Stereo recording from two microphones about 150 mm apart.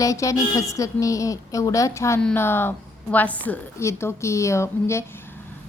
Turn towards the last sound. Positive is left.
turn(degrees=20)  # may be behind; listen again after turning